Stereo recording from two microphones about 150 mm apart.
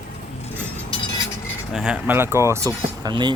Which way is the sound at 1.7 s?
5° right (ahead or behind).